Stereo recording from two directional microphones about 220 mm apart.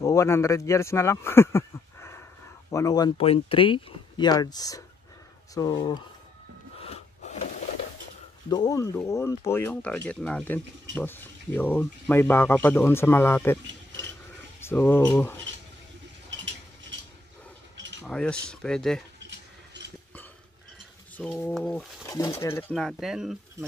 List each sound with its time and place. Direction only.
0.0 s speech: 15° left (ahead or behind)
6.8 s gasp: 30° left (ahead or behind)
8.5 s speech: 15° left (ahead or behind)
14.6 s speech: 10° left (ahead or behind)
18.0 s speech: 5° left (ahead or behind)
21.2 s speech: 10° left (ahead or behind)
22.0 s pigeon: 15° left (ahead or behind)
22.4 s speech: 10° left (ahead or behind)